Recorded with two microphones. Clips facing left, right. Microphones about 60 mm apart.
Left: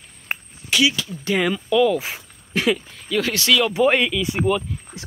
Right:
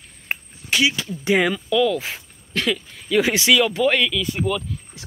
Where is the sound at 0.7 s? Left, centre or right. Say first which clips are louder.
Left 1 dB; right.